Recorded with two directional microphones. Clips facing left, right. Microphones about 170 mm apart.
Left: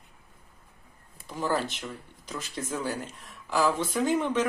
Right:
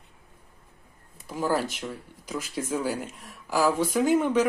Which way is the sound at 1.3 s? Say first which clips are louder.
Right 2 dB; 5° right (ahead or behind).